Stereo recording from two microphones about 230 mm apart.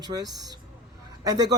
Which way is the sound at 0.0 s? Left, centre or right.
Centre.